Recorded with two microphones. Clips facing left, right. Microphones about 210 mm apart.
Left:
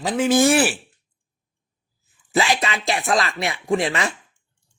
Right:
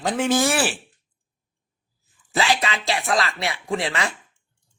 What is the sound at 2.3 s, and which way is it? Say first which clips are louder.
Speech: left 2 dB; 20° left (ahead or behind).